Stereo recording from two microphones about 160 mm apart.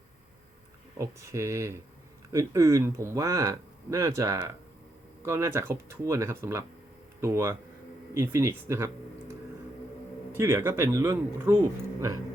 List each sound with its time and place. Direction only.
0.9 s speech: 20° right (ahead or behind)
10.4 s speech: 15° right (ahead or behind)
11.9 s a sound: 20° right (ahead or behind)